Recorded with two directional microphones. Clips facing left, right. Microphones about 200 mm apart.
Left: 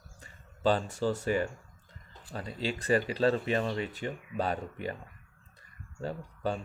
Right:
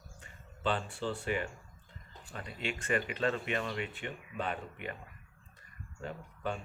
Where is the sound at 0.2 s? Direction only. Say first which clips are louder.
Left 7 dB; 40° left (ahead or behind).